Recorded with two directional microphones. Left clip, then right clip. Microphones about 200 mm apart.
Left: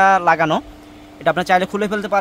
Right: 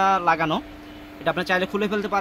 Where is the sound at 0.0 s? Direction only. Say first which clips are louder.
Left 6 dB; 50° left (ahead or behind).